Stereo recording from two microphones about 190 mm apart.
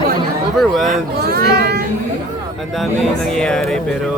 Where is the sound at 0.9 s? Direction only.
55° right (ahead or behind).